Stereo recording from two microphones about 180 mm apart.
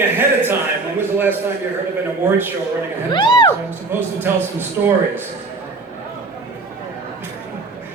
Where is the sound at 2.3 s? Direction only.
10° right (ahead or behind).